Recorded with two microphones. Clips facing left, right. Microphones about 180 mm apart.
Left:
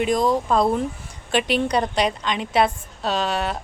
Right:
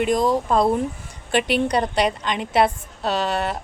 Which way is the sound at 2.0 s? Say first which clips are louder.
Right 1 dB; 55° right (ahead or behind).